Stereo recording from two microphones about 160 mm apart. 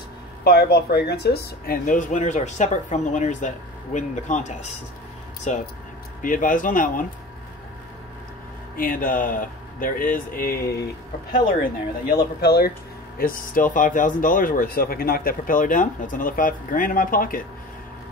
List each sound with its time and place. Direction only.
0.4 s speech: 90° left
1.9 s speech: 50° left (ahead or behind)
8.7 s speech: 60° left (ahead or behind)
12.4 s speech: 85° left
13.2 s speech: 60° left (ahead or behind)